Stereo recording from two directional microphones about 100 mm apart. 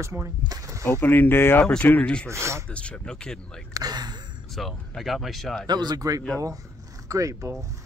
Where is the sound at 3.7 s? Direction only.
40° right (ahead or behind).